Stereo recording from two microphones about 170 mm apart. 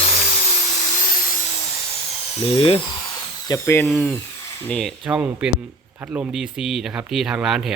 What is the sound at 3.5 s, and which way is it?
Speech, 15° left (ahead or behind).